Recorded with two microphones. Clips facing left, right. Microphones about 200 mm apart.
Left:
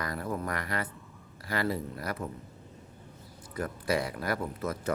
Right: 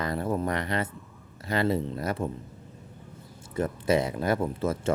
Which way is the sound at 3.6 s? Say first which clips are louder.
Right 6 dB; 25° right (ahead or behind).